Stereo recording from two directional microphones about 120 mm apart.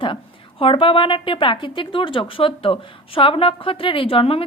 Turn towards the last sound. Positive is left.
turn(degrees=50)  # may be behind; listen again after turning